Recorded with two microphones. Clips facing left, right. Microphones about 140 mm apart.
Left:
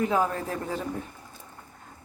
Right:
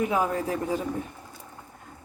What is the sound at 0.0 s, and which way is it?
Speech, 15° right (ahead or behind).